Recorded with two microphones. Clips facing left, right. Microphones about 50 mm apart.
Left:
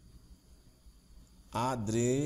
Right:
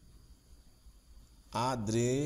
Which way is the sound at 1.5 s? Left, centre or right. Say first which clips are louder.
Even; left.